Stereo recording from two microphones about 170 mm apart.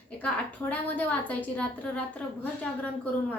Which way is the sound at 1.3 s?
10° left (ahead or behind).